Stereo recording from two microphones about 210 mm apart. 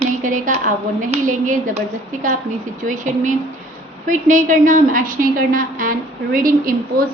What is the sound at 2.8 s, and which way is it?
A woman's voice, 35° right (ahead or behind).